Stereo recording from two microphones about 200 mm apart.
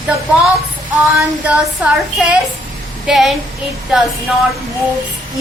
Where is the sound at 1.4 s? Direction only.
Centre (ahead or behind).